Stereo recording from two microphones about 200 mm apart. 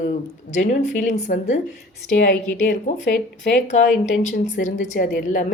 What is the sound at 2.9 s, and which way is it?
Speech, 35° left (ahead or behind).